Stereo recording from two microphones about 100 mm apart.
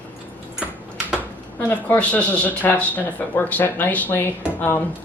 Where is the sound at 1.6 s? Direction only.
20° left (ahead or behind).